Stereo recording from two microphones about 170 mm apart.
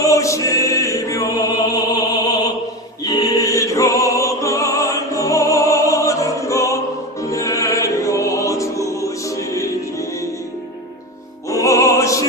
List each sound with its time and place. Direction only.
0.0 s music: 20° left (ahead or behind)
11.4 s opera: 20° left (ahead or behind)